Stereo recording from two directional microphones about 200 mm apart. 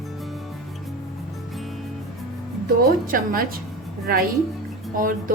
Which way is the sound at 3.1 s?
45° right (ahead or behind).